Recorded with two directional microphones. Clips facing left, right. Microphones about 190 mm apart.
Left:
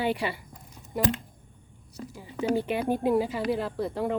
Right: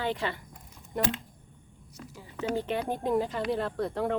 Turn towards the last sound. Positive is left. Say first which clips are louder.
# left 1 dB
turn(degrees=0)  # may be behind; listen again after turning